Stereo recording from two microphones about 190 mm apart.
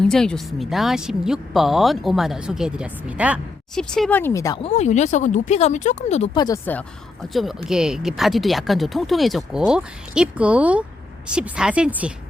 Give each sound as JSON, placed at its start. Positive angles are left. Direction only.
{"t": 0.0, "sound": "speech", "side_deg": 5}
{"t": 3.8, "sound": "speech", "side_deg": 5}
{"t": 4.6, "sound": "speech", "side_deg": 35}
{"t": 6.3, "sound": "speech", "side_deg": 20}
{"t": 6.7, "sound": "speech", "side_deg": 5}